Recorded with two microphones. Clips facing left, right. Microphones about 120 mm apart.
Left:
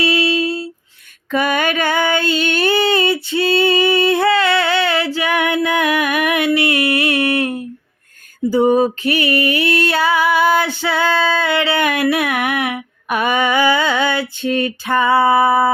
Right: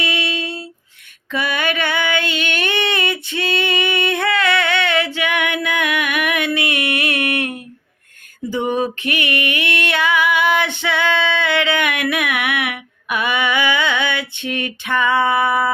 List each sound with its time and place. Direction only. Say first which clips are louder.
0.0 s a sound: left 7 dB; 30° left (ahead or behind)
1.3 s female singing: left 4 dB; 45° left (ahead or behind); by 7.6 s 30° left (ahead or behind)
8.4 s music: left 7 dB; 35° left (ahead or behind)